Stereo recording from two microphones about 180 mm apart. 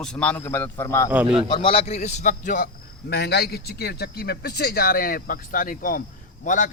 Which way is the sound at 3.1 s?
60° left (ahead or behind).